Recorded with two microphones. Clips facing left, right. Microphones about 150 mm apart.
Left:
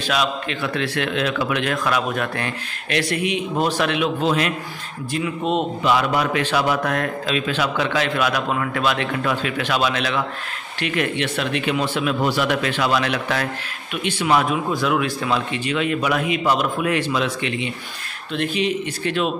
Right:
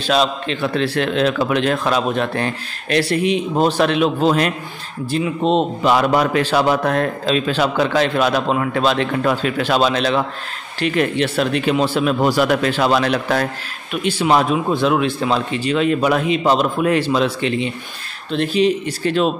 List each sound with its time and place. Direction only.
0.0 s a man's voice: 30° right (ahead or behind)
5.9 s a man's voice: 40° right (ahead or behind)